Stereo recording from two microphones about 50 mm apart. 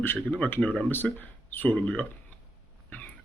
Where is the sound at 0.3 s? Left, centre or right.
Left.